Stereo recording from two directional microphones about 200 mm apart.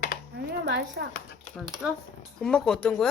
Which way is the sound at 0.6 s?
55° right (ahead or behind).